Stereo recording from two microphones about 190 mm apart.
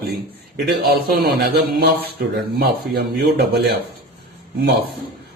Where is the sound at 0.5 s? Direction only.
55° right (ahead or behind).